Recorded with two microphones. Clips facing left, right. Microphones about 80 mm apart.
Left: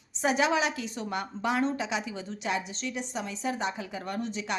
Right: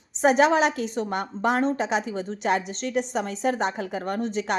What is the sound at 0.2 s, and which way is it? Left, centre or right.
A woman's voice, right.